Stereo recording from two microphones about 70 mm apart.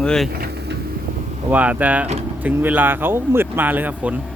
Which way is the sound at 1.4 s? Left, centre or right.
Right.